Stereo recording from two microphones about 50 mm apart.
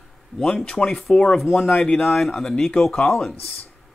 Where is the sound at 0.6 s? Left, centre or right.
Centre.